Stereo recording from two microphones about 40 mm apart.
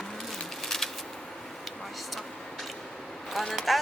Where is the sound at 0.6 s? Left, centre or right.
Centre.